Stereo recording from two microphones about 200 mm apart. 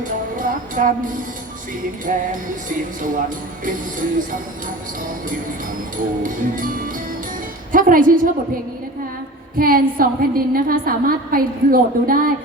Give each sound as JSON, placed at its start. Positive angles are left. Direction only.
{"t": 0.0, "sound": "music", "side_deg": -40}
{"t": 6.2, "sound": "a woman's voice", "side_deg": -45}
{"t": 9.6, "sound": "a woman's voice", "side_deg": -45}